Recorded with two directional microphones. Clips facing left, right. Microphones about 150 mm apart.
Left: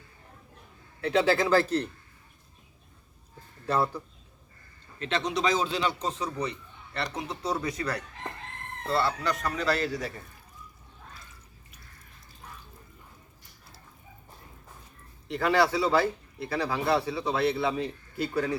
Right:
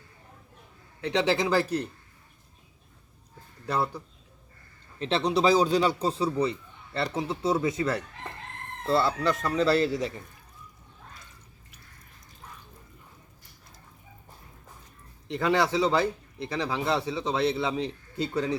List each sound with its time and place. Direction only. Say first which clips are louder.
1.0 s a man's voice: left 1 dB; 20° right (ahead or behind)
3.7 s a man's voice: left 2 dB; 10° right (ahead or behind)
4.9 s a man's voice: right 4 dB; 35° right (ahead or behind)
15.3 s speech: even; 20° right (ahead or behind)